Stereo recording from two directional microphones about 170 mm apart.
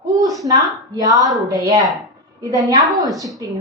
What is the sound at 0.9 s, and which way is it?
A woman's voice, 20° right (ahead or behind).